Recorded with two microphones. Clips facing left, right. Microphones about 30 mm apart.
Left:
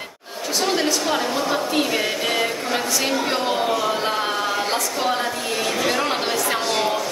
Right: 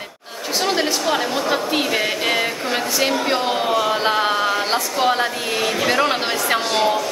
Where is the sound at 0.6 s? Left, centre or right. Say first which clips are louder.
Right 1 dB; right.